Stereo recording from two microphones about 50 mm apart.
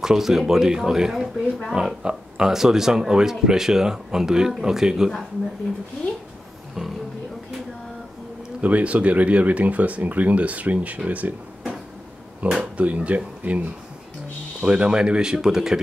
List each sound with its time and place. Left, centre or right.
0.0 s speech: centre
8.5 s speech: right
12.5 s speech: right
14.6 s speech: centre